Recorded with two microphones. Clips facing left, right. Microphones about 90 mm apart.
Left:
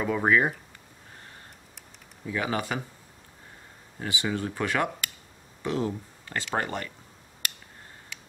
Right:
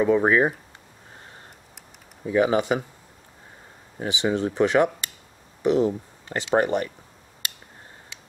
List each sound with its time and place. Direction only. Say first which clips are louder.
0.0 s speech: right 5 dB; 20° right (ahead or behind)
2.2 s speech: right 9 dB; 20° right (ahead or behind)
4.0 s speech: right 6 dB; 20° right (ahead or behind)